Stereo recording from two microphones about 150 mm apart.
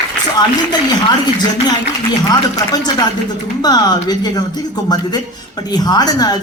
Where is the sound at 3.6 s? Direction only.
25° left (ahead or behind).